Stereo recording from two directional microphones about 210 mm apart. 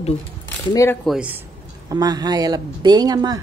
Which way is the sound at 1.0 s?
5° right (ahead or behind).